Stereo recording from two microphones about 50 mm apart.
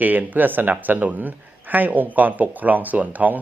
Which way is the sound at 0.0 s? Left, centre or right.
Right.